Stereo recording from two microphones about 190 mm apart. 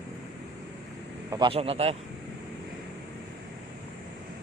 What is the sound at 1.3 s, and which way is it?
Speech, 25° right (ahead or behind).